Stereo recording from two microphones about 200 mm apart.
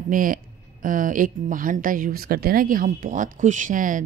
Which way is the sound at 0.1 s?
45° right (ahead or behind).